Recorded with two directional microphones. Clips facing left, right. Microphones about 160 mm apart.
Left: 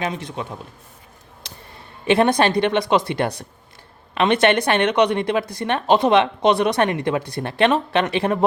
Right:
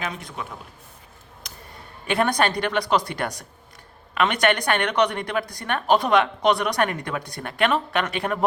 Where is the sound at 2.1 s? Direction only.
25° left (ahead or behind).